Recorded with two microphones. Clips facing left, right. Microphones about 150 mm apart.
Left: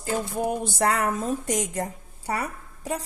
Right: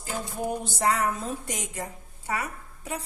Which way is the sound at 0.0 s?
60° left (ahead or behind).